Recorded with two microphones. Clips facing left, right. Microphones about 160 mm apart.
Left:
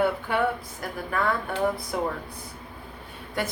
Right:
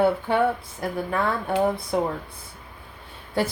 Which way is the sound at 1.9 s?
25° right (ahead or behind).